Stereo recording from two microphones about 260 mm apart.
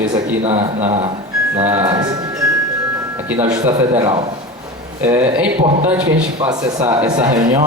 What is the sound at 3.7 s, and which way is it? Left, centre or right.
Speech, centre.